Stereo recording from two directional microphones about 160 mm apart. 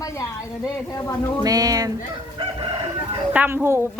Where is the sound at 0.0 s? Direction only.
20° left (ahead or behind).